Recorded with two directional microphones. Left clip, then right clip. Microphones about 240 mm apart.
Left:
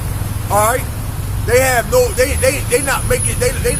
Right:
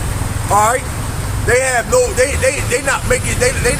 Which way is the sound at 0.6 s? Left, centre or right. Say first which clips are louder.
Right 1 dB; centre.